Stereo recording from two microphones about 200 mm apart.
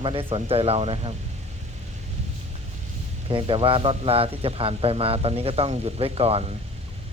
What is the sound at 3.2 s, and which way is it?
A man's voice, 25° right (ahead or behind).